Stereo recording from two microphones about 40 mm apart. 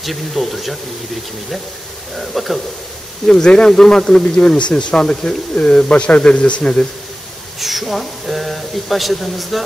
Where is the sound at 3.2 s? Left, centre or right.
Centre.